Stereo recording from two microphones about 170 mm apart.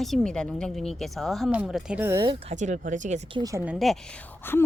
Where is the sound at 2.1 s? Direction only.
20° right (ahead or behind).